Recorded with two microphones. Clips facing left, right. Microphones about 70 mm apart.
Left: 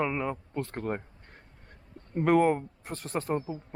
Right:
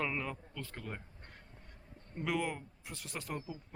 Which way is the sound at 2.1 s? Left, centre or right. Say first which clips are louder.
Left 13 dB; left.